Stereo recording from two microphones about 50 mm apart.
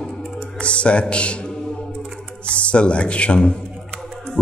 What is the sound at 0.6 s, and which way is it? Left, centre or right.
A man's voice, left.